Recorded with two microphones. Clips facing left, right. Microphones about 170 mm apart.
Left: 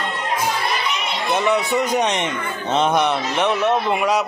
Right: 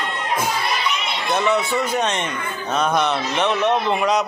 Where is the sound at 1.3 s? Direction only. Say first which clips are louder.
Left 1 dB; 15° left (ahead or behind).